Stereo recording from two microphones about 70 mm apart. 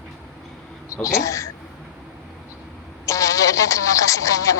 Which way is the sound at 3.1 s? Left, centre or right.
Left.